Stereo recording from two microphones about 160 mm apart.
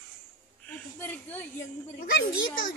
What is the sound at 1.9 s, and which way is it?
Speech, 60° left (ahead or behind).